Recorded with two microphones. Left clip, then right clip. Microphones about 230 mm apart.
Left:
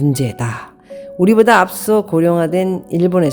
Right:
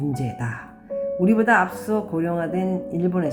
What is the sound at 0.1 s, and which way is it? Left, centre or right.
Speech, left.